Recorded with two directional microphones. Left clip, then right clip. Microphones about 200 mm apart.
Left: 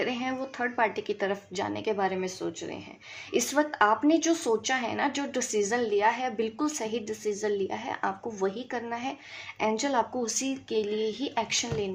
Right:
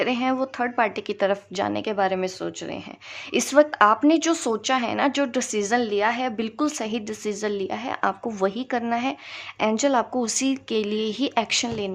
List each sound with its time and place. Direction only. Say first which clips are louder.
0.0 s speech: right 7 dB; 35° right (ahead or behind)